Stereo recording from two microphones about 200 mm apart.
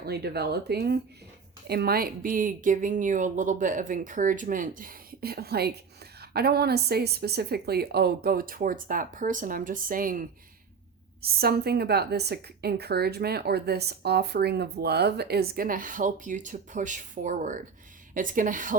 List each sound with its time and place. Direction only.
0.0 s a woman's voice: 55° right (ahead or behind)